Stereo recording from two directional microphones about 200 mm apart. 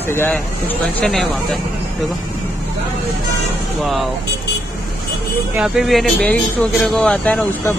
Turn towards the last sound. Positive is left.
turn(degrees=5)  # may be behind; listen again after turning